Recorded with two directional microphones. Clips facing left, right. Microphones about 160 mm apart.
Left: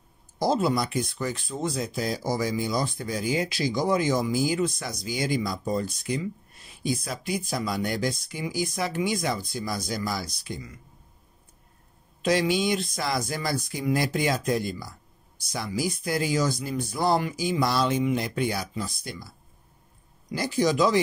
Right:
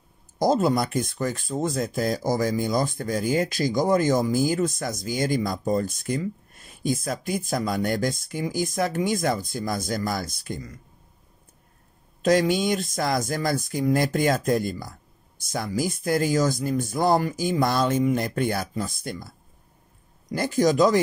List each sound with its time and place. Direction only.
0.4 s speech: 45° right (ahead or behind)
12.2 s speech: 45° right (ahead or behind)